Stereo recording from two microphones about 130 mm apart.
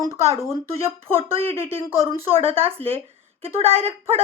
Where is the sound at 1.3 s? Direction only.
45° right (ahead or behind).